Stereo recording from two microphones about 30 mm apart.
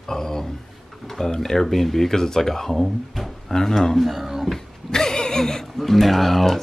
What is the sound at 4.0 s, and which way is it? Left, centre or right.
Speech, centre.